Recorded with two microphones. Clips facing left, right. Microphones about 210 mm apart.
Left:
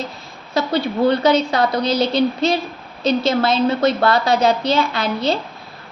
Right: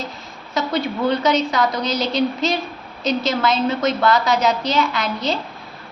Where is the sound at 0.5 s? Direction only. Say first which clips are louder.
Left 3 dB; 30° left (ahead or behind).